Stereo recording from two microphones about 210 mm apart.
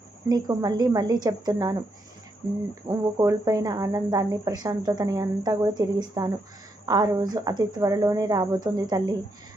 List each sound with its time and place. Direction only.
0.3 s speech: 20° right (ahead or behind)